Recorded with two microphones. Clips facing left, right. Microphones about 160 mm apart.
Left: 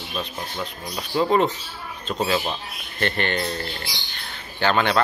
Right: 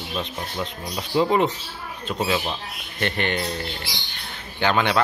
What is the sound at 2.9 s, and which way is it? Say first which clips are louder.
Speech: left 1 dB; 15° right (ahead or behind).